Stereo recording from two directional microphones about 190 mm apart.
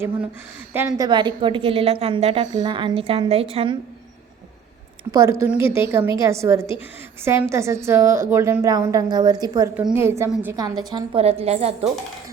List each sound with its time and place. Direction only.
0.7 s a woman's voice: 10° right (ahead or behind); by 3.8 s 30° right (ahead or behind)
5.1 s a woman's voice: 15° right (ahead or behind); by 11.9 s 35° right (ahead or behind)